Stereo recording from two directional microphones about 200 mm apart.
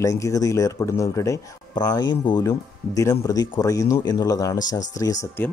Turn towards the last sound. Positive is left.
turn(degrees=15)  # may be behind; listen again after turning